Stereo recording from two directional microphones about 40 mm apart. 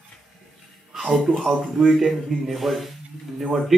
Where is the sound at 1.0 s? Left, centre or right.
Centre.